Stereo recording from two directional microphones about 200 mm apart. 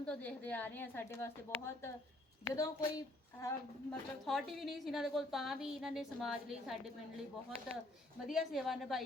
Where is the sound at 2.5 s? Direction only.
15° left (ahead or behind).